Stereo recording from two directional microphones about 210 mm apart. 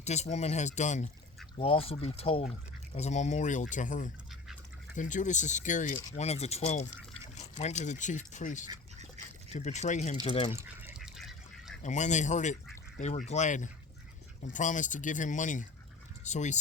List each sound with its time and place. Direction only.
0.0 s speech: 30° left (ahead or behind)
10.5 s goose: 10° right (ahead or behind)
11.8 s speech: 35° left (ahead or behind)